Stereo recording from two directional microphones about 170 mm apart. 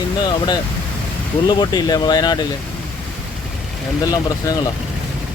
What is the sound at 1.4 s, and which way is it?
Speech, 25° left (ahead or behind).